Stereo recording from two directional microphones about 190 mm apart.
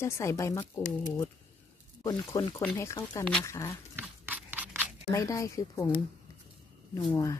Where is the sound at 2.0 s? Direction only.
20° left (ahead or behind).